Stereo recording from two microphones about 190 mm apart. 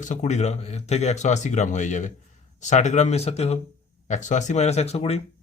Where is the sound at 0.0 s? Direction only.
40° left (ahead or behind).